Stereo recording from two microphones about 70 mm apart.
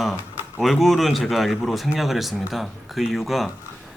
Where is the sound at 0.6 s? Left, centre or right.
Centre.